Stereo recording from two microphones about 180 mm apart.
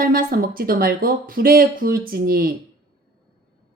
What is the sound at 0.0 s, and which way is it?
Speech, 55° right (ahead or behind).